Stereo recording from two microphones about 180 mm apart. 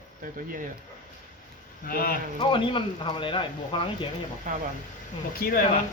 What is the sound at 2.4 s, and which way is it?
Speech, 25° left (ahead or behind).